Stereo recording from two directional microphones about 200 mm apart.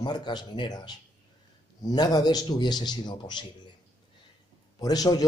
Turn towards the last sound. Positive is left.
turn(degrees=20)  # may be behind; listen again after turning